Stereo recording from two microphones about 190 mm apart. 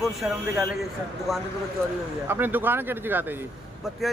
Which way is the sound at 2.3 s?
10° right (ahead or behind).